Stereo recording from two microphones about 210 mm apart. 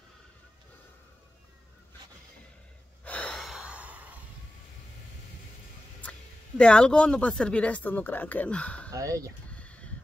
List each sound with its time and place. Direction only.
3.0 s gasp: 5° left (ahead or behind)
6.6 s speech: 5° left (ahead or behind)
8.9 s speech: 15° right (ahead or behind)
9.6 s a sound: 5° left (ahead or behind)